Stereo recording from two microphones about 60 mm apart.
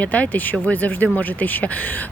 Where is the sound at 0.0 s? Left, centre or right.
Left.